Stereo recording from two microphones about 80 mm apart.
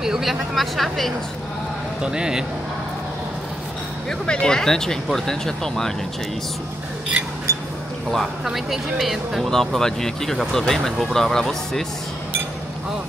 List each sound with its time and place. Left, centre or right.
0.0 s speech: centre
2.0 s speech: centre
4.3 s speech: centre
7.5 s a sound: right
8.1 s speech: centre